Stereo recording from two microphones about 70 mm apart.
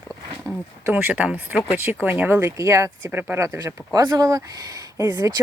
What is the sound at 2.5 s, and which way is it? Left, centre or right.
Speech, right.